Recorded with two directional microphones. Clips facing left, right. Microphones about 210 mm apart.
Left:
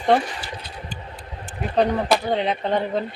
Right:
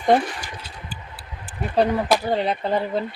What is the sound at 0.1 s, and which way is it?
Speech, 10° right (ahead or behind).